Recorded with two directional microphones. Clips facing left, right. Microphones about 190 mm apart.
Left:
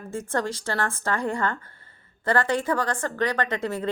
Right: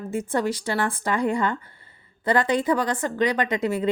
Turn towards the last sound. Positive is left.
turn(degrees=-10)  # may be behind; listen again after turning